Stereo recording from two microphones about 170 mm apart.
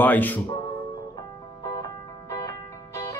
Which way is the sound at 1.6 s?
20° left (ahead or behind).